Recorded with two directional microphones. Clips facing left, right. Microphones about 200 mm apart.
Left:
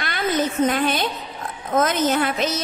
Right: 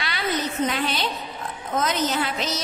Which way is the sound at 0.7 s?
50° left (ahead or behind).